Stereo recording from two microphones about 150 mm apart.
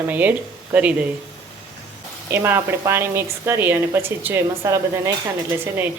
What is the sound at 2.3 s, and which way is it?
Stir, 15° right (ahead or behind).